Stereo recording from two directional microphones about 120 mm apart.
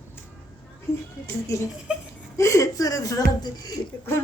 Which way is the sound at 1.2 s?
25° left (ahead or behind).